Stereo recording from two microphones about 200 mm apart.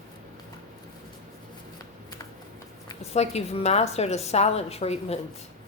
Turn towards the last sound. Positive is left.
turn(degrees=30)  # may be behind; listen again after turning